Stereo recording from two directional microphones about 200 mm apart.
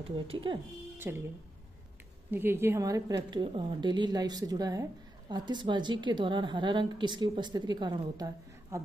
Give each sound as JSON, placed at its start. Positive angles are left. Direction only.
{"t": 0.3, "sound": "a woman's voice", "side_deg": -25}
{"t": 1.0, "sound": "speech", "side_deg": -10}
{"t": 2.3, "sound": "a woman's voice", "side_deg": -10}